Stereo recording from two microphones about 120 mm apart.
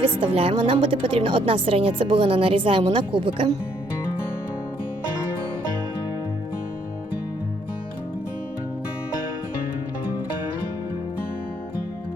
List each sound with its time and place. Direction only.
0.0 s a woman's voice: 50° right (ahead or behind)